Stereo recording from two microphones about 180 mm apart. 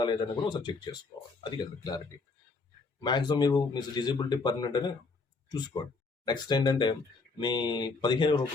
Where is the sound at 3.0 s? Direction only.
25° left (ahead or behind).